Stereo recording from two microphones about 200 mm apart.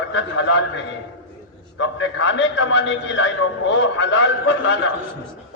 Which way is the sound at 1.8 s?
75° left (ahead or behind).